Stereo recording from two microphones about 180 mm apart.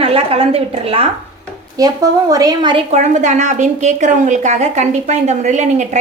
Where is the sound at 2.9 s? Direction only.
40° right (ahead or behind).